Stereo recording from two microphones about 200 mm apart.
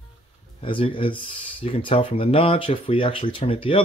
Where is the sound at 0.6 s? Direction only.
25° left (ahead or behind).